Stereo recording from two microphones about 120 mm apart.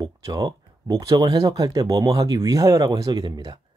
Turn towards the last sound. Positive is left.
turn(degrees=-35)  # may be behind; listen again after turning